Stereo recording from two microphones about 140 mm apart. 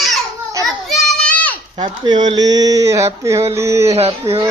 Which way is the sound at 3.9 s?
45° right (ahead or behind).